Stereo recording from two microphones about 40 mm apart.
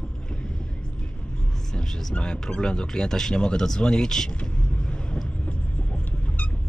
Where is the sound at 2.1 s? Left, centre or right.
Left.